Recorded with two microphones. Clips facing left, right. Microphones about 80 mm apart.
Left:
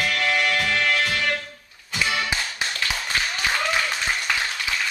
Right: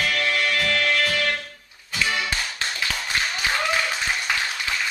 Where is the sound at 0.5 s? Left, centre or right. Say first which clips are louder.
Even; centre.